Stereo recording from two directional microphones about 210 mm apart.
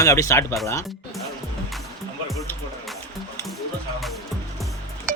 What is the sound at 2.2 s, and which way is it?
Music, centre (ahead or behind).